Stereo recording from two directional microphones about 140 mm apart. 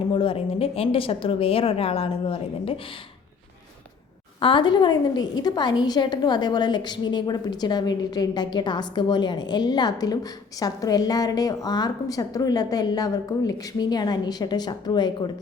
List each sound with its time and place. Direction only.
0.1 s a woman's voice: 40° left (ahead or behind)
4.4 s a woman's voice: 40° left (ahead or behind)